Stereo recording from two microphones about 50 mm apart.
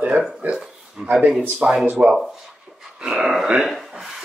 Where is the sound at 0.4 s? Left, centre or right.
Right.